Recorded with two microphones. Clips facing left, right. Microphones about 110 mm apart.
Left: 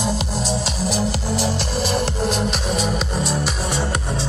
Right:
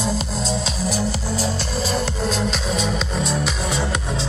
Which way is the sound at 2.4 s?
10° left (ahead or behind).